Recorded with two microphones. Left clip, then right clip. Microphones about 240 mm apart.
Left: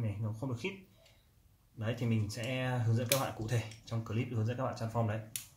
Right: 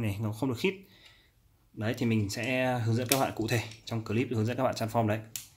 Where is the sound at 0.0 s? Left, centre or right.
Right.